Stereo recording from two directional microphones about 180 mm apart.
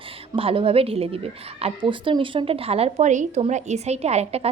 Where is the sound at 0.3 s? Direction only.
30° right (ahead or behind).